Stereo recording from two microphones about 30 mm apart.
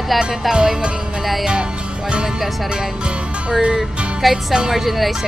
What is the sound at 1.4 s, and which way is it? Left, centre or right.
Music, right.